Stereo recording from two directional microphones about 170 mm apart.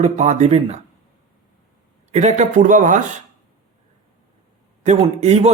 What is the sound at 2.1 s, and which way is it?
Speech, 45° right (ahead or behind).